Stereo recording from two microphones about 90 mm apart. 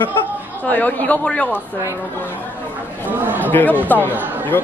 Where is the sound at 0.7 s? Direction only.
15° left (ahead or behind).